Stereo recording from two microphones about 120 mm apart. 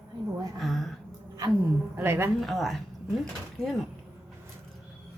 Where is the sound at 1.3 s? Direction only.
30° right (ahead or behind).